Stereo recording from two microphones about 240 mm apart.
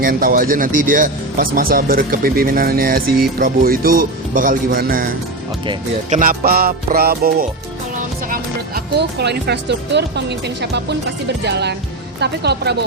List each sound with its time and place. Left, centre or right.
0.0 s speech: right